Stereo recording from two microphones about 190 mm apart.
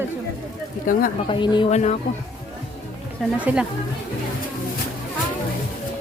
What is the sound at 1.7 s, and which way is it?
Speech, 35° left (ahead or behind).